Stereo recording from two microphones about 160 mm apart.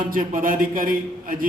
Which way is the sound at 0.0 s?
60° right (ahead or behind).